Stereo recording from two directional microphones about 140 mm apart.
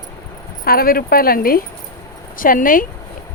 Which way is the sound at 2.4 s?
80° left.